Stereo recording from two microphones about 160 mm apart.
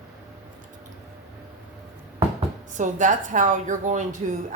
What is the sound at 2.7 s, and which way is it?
A woman's voice, 50° right (ahead or behind).